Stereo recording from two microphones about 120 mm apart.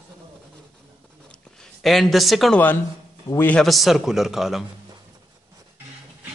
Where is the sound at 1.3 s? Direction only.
5° left (ahead or behind).